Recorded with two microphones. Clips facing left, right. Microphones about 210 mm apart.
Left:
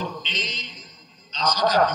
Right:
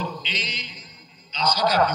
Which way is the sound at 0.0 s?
10° right (ahead or behind).